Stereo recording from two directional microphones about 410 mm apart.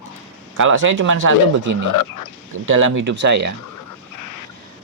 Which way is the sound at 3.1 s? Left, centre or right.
Right.